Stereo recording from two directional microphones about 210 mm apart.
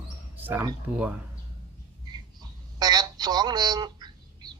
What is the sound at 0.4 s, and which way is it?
Speech, 10° right (ahead or behind).